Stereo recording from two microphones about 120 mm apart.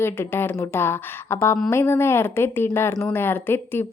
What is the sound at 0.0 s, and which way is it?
A woman's voice, 20° left (ahead or behind).